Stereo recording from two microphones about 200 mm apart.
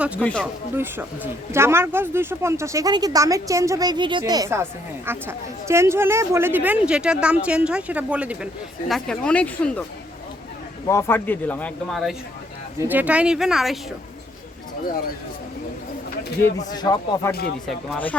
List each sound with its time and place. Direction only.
0.2 s speech: 5° left (ahead or behind)
0.8 s speech: 10° right (ahead or behind)
8.9 s speech: 5° left (ahead or behind)
10.8 s a woman's voice: 15° left (ahead or behind); by 13.7 s centre (ahead or behind)
16.6 s speech: 20° left (ahead or behind)
17.7 s speech: 5° left (ahead or behind)